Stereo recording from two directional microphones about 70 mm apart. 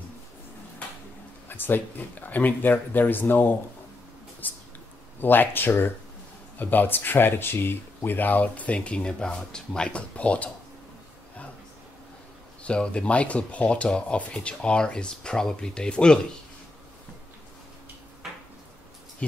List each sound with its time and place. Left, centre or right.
1.5 s speech: left
4.4 s mouse: left
5.2 s speech: left
12.6 s speech: centre